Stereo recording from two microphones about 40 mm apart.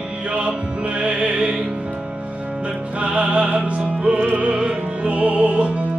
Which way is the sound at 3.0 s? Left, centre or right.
Right.